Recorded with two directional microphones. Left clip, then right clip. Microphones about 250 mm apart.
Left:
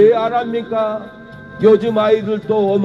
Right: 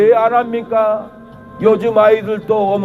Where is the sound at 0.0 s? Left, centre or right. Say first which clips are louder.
Right 2 dB; right.